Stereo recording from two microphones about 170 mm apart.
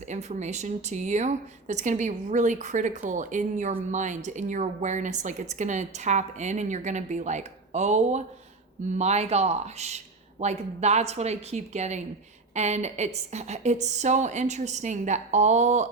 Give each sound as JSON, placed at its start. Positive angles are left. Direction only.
{"t": 0.1, "sound": "a woman's voice", "side_deg": -45}